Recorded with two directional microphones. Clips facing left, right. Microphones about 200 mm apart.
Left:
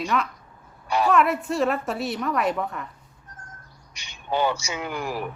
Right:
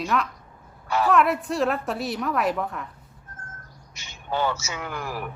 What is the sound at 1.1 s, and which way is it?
Speech, centre (ahead or behind).